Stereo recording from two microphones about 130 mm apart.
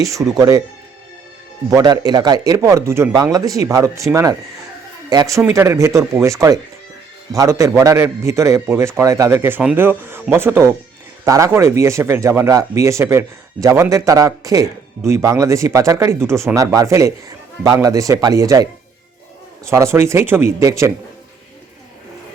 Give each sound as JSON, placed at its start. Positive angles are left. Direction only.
{"t": 0.0, "sound": "a man's voice", "side_deg": -25}
{"t": 1.7, "sound": "a man's voice", "side_deg": -30}